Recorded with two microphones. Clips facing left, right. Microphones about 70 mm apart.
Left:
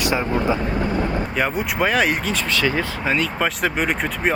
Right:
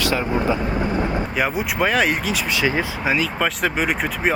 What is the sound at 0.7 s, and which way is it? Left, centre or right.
Vehicle, centre.